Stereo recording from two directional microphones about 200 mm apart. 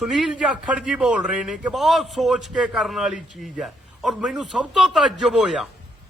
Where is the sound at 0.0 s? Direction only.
Centre (ahead or behind).